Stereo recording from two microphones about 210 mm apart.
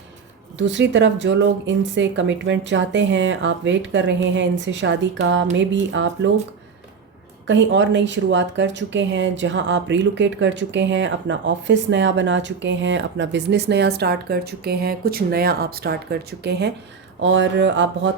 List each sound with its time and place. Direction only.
0.6 s speech: 60° right (ahead or behind)
7.4 s speech: 60° right (ahead or behind)